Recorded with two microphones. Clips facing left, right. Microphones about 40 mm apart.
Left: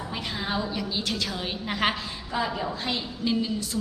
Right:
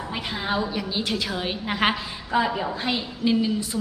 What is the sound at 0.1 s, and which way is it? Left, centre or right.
A woman's voice, centre.